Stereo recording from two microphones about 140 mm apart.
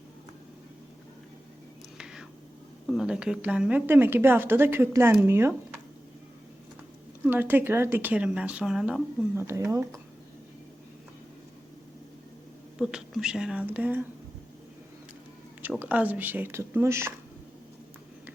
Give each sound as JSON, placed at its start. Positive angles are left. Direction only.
{"t": 2.0, "sound": "whispering", "side_deg": -5}
{"t": 2.8, "sound": "speech", "side_deg": 0}
{"t": 7.3, "sound": "speech", "side_deg": -15}
{"t": 9.3, "sound": "speech", "side_deg": -20}
{"t": 12.8, "sound": "speech", "side_deg": -5}
{"t": 15.8, "sound": "speech", "side_deg": -10}